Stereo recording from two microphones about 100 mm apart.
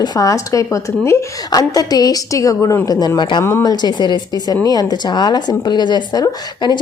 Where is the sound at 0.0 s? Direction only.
40° left (ahead or behind).